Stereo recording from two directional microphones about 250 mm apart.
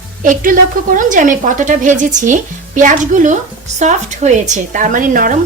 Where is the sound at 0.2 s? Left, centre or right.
Right.